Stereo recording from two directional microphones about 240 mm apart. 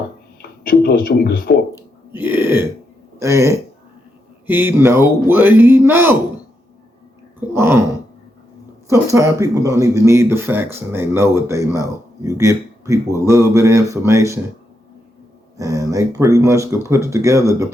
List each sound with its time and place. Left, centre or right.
0.4 s speech: left
2.1 s speech: centre
7.3 s a sound: centre
8.9 s speech: centre
15.5 s speech: centre